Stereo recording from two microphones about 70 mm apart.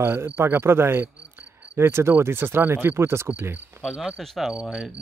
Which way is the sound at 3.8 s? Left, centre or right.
Centre.